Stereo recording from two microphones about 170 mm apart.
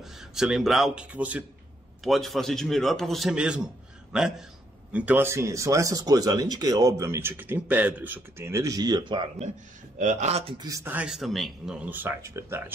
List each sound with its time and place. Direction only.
0.0 s a man's voice: 5° right (ahead or behind); by 9.5 s 30° right (ahead or behind)
9.9 s speech: 45° right (ahead or behind)
10.6 s speech: 20° right (ahead or behind)